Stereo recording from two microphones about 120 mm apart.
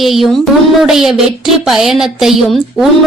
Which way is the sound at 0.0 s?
Centre (ahead or behind).